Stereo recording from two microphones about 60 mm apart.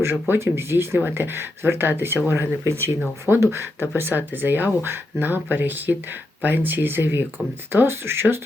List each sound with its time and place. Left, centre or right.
0.0 s speech: right